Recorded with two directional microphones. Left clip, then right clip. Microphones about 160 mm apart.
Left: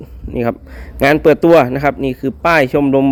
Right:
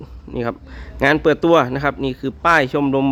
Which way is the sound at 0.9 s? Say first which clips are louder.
Left 5 dB; 20° left (ahead or behind).